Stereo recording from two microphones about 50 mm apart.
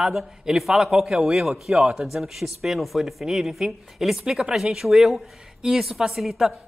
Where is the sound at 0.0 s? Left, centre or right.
Centre.